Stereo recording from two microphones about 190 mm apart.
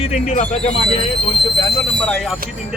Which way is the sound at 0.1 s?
35° left (ahead or behind).